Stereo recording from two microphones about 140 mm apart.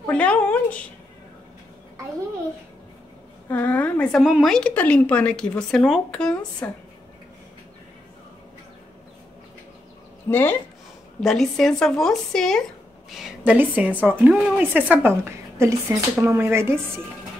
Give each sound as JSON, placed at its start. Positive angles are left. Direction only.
{"t": 0.0, "sound": "a woman's voice", "side_deg": 10}
{"t": 3.4, "sound": "a woman's voice", "side_deg": 10}
{"t": 4.2, "sound": "a woman's voice", "side_deg": -5}
{"t": 10.3, "sound": "a woman's voice", "side_deg": 15}
{"t": 11.1, "sound": "a woman's voice", "side_deg": 0}